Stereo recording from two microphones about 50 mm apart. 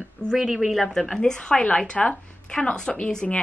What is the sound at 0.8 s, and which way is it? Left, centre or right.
A woman's voice, centre.